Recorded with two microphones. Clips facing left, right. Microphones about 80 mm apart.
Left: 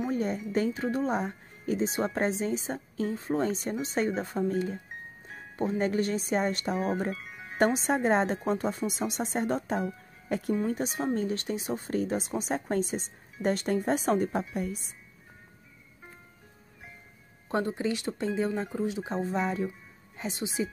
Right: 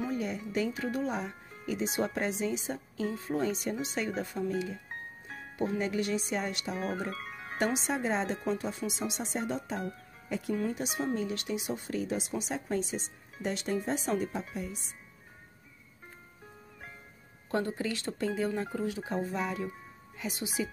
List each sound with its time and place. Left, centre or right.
0.1 s speech: left
7.2 s music: right
7.5 s a woman's voice: left
10.7 s a woman's voice: left
17.5 s speech: left